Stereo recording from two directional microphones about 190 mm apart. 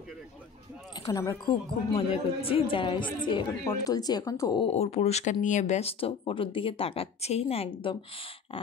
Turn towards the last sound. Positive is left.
turn(degrees=30)  # may be behind; listen again after turning